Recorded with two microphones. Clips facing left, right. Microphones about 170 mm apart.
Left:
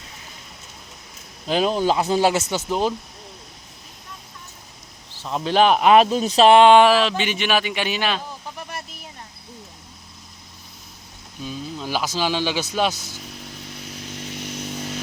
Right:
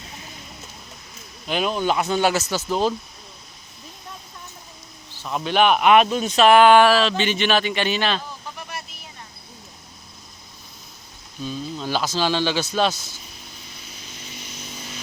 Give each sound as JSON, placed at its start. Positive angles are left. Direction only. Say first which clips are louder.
{"t": 1.5, "sound": "speech", "louder": "left 3 dB", "side_deg": 35}
{"t": 5.2, "sound": "speech", "louder": "left 1 dB", "side_deg": 30}
{"t": 11.4, "sound": "speech", "louder": "right 2 dB", "side_deg": 10}
{"t": 13.4, "sound": "motorcycle", "louder": "left 7 dB", "side_deg": 70}